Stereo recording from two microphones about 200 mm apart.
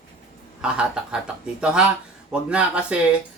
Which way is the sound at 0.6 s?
5° right (ahead or behind).